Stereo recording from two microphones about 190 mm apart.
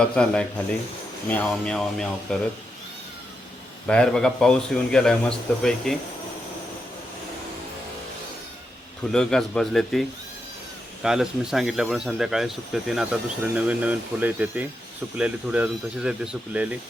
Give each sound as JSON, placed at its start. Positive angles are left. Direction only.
{"t": 0.0, "sound": "speech", "side_deg": 5}
{"t": 3.8, "sound": "speech", "side_deg": 5}
{"t": 9.1, "sound": "speech", "side_deg": 5}